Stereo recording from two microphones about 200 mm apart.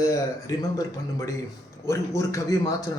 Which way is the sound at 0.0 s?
20° left (ahead or behind).